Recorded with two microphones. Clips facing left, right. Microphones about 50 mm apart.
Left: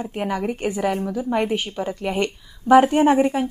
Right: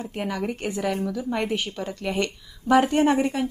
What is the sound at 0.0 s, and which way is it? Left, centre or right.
A woman's voice, centre.